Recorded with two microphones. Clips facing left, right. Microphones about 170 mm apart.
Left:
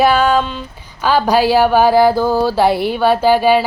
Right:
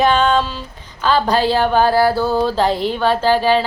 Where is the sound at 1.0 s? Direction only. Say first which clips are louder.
Left 2 dB; 10° left (ahead or behind).